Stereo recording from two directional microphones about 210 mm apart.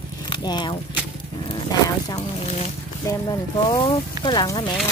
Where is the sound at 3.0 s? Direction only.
15° left (ahead or behind).